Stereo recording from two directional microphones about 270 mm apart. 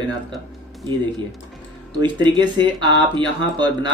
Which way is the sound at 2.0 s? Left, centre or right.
Centre.